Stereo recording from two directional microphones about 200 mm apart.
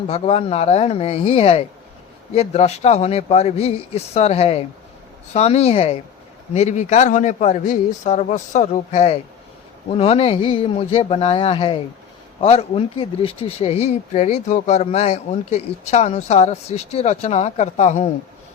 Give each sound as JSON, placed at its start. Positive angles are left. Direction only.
{"t": 0.1, "sound": "speech", "side_deg": 30}